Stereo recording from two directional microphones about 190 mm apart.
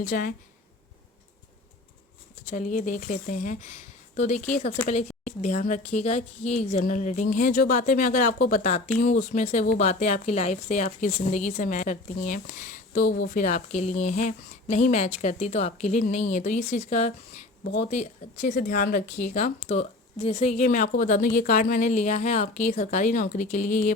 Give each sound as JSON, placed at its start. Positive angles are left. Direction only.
{"t": 0.0, "sound": "speech", "side_deg": 50}
{"t": 2.5, "sound": "a woman's voice", "side_deg": 40}
{"t": 19.6, "sound": "a woman's voice", "side_deg": 35}